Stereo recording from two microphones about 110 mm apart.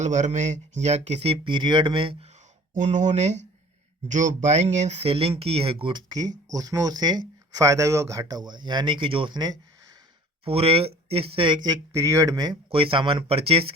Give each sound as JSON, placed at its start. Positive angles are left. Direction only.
{"t": 0.0, "sound": "speech", "side_deg": -90}
{"t": 2.7, "sound": "speech", "side_deg": -90}
{"t": 10.4, "sound": "speech", "side_deg": -60}
{"t": 11.9, "sound": "speech", "side_deg": -30}
{"t": 12.7, "sound": "speech", "side_deg": -55}